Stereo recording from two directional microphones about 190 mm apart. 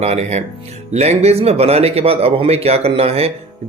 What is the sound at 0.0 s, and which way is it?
Speech, 35° right (ahead or behind).